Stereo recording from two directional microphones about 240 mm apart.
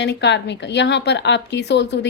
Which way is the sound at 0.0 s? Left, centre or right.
Left.